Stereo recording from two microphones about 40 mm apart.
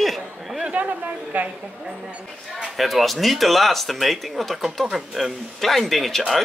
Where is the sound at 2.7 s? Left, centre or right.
Centre.